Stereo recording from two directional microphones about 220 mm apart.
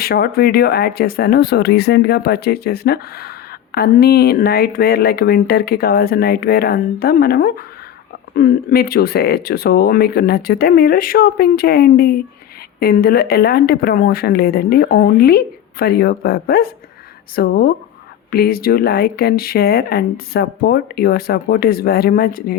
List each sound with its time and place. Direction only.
0.0 s speech: 45° left (ahead or behind)